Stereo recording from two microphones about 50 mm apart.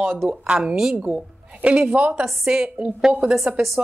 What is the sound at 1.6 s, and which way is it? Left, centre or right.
Speech, right.